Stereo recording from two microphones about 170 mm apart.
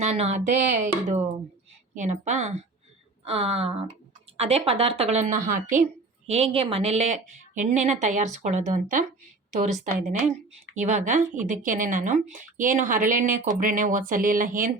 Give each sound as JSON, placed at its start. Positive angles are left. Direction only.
{"t": 0.0, "sound": "a woman's voice", "side_deg": -40}
{"t": 6.2, "sound": "speech", "side_deg": -35}